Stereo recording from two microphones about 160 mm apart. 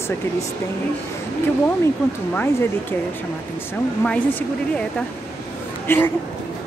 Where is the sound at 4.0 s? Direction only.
5° left (ahead or behind).